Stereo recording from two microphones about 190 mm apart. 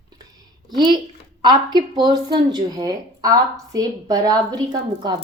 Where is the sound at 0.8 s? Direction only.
25° right (ahead or behind).